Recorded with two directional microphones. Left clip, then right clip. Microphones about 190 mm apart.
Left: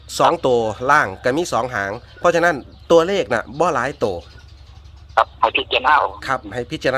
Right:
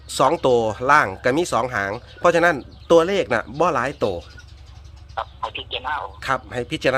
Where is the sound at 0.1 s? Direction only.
Centre (ahead or behind).